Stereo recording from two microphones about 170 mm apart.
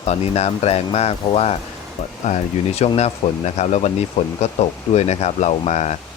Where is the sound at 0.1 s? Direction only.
40° left (ahead or behind).